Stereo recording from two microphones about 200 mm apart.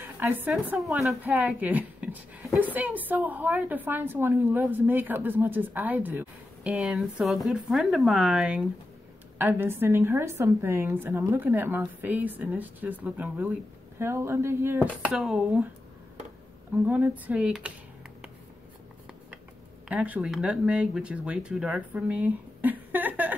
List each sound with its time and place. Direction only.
0.5 s a woman's voice: centre (ahead or behind)
16.7 s a woman's voice: 10° right (ahead or behind)
19.9 s a woman's voice: 5° right (ahead or behind)